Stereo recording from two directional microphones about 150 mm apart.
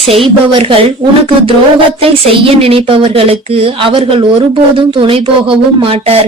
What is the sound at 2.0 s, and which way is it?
Speech, 40° right (ahead or behind).